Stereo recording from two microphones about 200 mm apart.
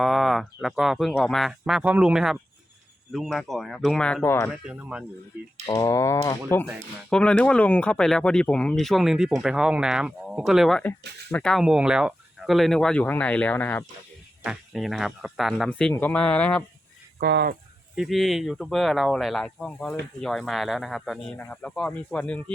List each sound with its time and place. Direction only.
0.0 s speech: centre (ahead or behind)
4.5 s speech: 5° right (ahead or behind)
5.6 s speech: 15° left (ahead or behind)
14.4 s speech: 5° right (ahead or behind)
17.2 s speech: 50° right (ahead or behind)
17.9 s speech: centre (ahead or behind)